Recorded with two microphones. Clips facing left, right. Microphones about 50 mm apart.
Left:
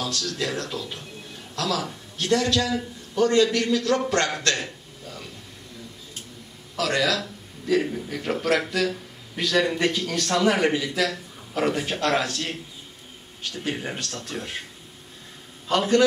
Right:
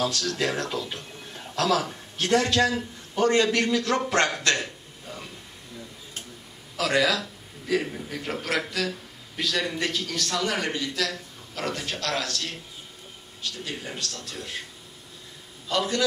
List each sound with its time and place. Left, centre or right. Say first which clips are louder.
0.1 s a man's voice: right 1 dB; right
5.0 s a sound: even; centre
6.8 s a man's voice: even; centre; by 14.6 s left
15.7 s a man's voice: left 5 dB; left